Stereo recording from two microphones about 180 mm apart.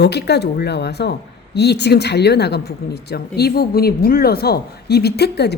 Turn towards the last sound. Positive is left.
turn(degrees=65)  # may be behind; listen again after turning